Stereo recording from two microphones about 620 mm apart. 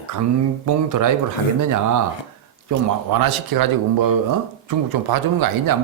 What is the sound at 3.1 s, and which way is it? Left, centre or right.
Speech, right.